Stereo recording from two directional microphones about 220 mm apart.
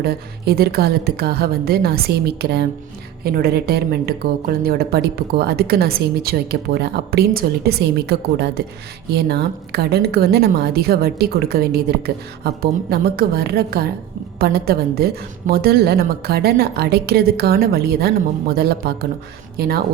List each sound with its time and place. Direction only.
0.0 s a woman's voice: 45° right (ahead or behind)